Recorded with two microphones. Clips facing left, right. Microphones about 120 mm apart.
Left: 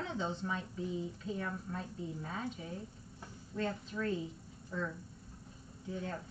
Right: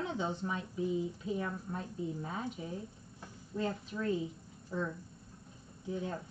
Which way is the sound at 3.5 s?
5° right (ahead or behind).